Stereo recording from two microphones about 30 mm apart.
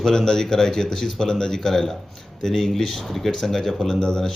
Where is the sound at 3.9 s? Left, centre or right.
Left.